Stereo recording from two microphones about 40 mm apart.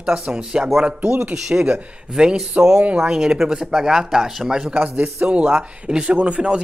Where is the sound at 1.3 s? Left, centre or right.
Centre.